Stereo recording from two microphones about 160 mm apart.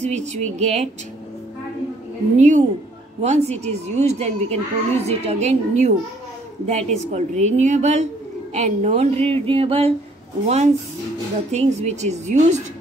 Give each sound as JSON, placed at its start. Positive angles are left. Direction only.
{"t": 0.0, "sound": "a woman's voice", "side_deg": -45}
{"t": 2.3, "sound": "a woman's voice", "side_deg": -45}